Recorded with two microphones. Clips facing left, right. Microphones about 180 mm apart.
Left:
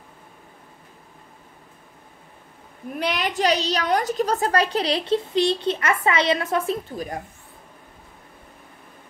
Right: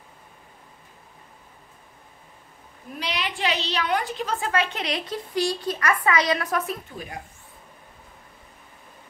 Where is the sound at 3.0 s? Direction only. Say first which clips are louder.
Left 5 dB; 50° left (ahead or behind); by 7.1 s 30° left (ahead or behind).